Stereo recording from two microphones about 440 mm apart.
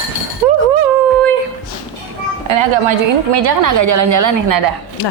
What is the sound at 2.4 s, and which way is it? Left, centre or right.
A woman's voice, right.